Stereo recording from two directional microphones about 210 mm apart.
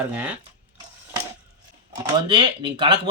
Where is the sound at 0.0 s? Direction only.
10° right (ahead or behind).